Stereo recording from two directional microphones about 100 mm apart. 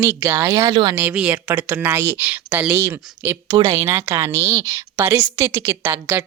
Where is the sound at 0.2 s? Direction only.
25° right (ahead or behind).